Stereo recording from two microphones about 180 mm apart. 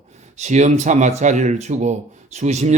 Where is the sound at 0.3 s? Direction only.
40° right (ahead or behind).